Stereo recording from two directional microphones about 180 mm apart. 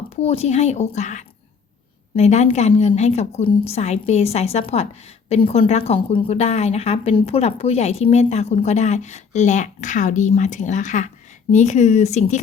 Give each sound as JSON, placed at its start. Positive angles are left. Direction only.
{"t": 0.2, "sound": "a woman's voice", "side_deg": 35}